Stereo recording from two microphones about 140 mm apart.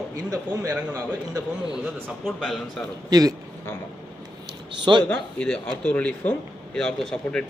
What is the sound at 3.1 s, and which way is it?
Speech, 25° right (ahead or behind).